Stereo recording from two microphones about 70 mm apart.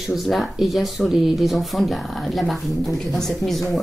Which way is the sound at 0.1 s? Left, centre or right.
Centre.